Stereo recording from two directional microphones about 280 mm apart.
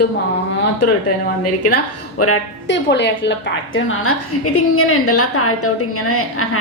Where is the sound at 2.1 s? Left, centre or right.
Left.